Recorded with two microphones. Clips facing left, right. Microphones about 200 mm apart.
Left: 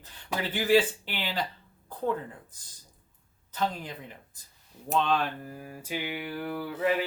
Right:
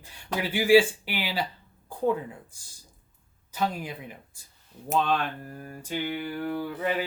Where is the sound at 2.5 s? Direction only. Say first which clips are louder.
Right 1 dB; 10° right (ahead or behind).